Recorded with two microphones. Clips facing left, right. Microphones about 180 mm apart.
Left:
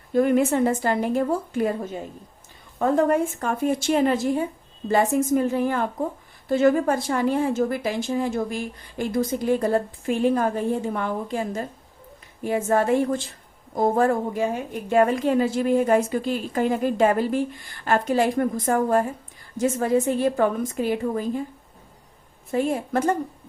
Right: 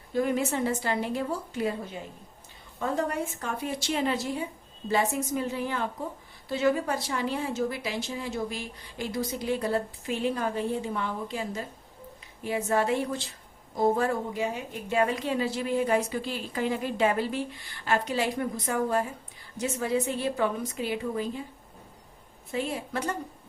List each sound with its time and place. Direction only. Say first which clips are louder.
0.1 s a woman's voice: left 8 dB; 55° left (ahead or behind)
22.5 s a woman's voice: left 8 dB; 50° left (ahead or behind)